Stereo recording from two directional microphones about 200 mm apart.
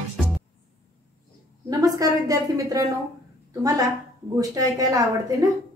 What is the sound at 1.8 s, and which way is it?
A woman's voice, 20° right (ahead or behind).